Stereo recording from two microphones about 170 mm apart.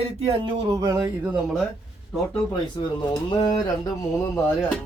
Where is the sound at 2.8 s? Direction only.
25° left (ahead or behind).